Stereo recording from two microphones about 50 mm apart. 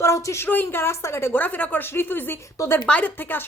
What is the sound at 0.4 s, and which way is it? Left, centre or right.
Speech, left.